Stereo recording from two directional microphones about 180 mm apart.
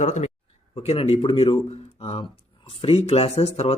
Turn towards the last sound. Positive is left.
turn(degrees=35)  # may be behind; listen again after turning